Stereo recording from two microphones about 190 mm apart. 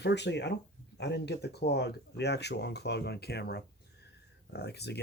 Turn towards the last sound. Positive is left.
turn(degrees=60)  # may be behind; listen again after turning